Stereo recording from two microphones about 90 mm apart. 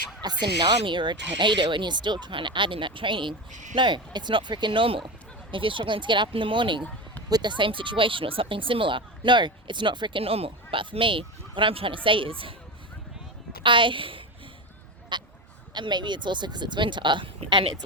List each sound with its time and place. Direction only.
0.2 s speech: 50° right (ahead or behind)
7.3 s speech: 50° right (ahead or behind); by 12.5 s 85° right
13.6 s speech: 65° right (ahead or behind)
15.1 s a sound: 60° right (ahead or behind)
15.7 s speech: 55° right (ahead or behind)